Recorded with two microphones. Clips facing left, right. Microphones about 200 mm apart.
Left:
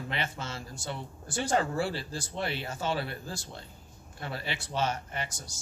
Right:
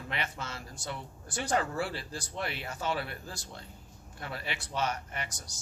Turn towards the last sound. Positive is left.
turn(degrees=30)  # may be behind; listen again after turning